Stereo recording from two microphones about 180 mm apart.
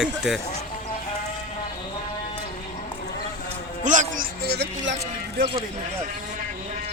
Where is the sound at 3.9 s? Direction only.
45° right (ahead or behind); by 5.0 s 80° right.